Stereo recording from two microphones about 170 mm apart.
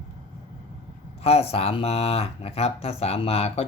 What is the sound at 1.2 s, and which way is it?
Speech, 35° left (ahead or behind).